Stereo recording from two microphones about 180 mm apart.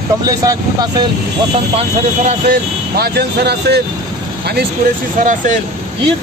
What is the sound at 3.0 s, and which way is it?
Speech, 65° right (ahead or behind).